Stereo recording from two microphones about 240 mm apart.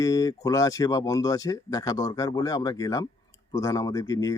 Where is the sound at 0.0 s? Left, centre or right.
Centre.